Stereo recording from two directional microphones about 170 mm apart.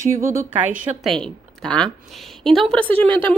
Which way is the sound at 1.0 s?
5° left (ahead or behind).